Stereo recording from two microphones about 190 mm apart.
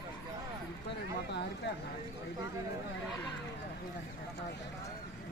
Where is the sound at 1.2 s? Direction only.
65° left (ahead or behind).